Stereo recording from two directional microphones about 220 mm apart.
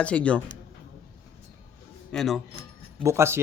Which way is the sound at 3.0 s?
15° right (ahead or behind).